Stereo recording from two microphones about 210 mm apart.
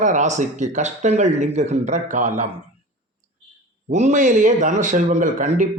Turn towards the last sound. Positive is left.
turn(degrees=-35)  # may be behind; listen again after turning